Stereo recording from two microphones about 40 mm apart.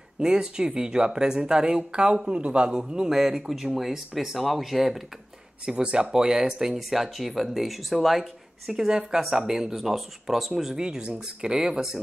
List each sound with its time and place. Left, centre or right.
0.2 s speech: centre
5.7 s speech: right
6.8 s speech: centre
8.7 s speech: centre
10.8 s speech: right